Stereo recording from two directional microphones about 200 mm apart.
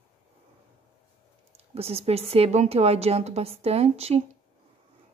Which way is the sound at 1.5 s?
30° right (ahead or behind).